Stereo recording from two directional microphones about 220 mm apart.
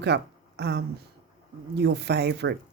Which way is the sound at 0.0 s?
50° right (ahead or behind).